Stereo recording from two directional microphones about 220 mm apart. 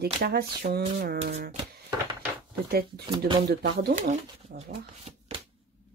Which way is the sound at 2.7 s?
45° right (ahead or behind).